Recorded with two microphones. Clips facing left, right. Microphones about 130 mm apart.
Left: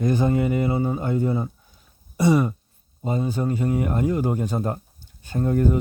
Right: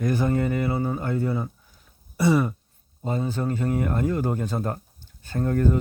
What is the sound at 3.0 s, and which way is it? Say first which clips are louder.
Speech: left 2 dB; 15° left (ahead or behind).